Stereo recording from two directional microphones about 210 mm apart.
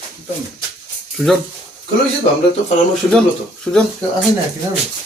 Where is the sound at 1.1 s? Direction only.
Centre (ahead or behind).